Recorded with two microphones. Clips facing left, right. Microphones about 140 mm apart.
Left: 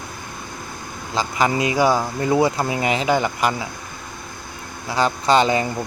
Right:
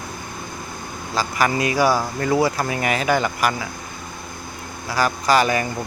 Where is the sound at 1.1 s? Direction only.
20° left (ahead or behind).